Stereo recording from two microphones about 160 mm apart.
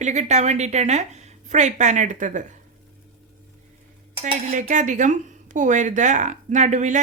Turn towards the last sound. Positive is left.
turn(degrees=-50)  # may be behind; listen again after turning